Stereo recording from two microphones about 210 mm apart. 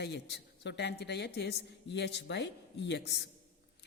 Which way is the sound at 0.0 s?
55° left (ahead or behind).